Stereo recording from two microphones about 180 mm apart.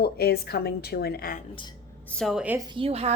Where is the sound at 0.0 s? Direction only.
60° left (ahead or behind).